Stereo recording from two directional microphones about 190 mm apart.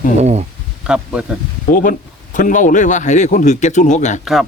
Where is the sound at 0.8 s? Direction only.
5° right (ahead or behind).